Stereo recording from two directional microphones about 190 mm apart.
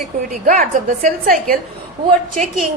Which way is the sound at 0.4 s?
40° right (ahead or behind).